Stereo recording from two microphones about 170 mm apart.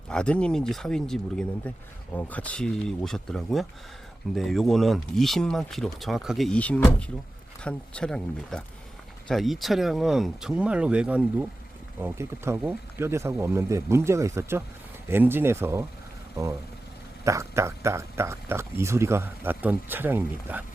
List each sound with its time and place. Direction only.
0.1 s speech: 5° left (ahead or behind); by 15.8 s 15° right (ahead or behind)
17.2 s speech: 15° right (ahead or behind)